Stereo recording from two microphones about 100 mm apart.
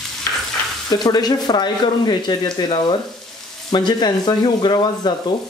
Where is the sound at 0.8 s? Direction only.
40° left (ahead or behind).